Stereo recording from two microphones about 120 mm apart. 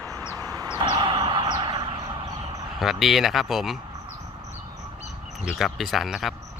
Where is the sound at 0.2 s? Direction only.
20° left (ahead or behind).